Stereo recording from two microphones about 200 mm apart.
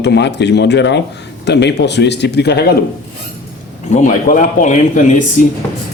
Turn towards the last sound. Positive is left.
turn(degrees=40)  # may be behind; listen again after turning